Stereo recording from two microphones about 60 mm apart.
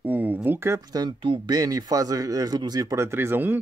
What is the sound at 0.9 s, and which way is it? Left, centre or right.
Speech, right.